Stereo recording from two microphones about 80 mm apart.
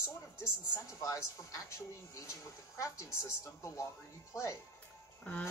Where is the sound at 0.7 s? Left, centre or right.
Left.